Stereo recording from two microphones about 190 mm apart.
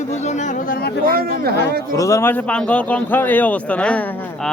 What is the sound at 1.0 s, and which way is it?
Speech, 50° right (ahead or behind).